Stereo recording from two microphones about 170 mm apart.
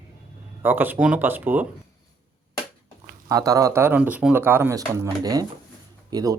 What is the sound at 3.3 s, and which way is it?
Speech, 20° right (ahead or behind).